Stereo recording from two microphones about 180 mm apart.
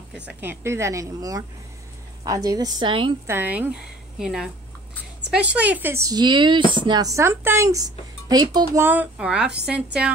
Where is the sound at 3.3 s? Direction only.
10° right (ahead or behind).